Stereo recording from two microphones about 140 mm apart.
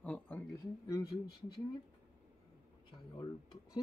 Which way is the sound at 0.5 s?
25° left (ahead or behind).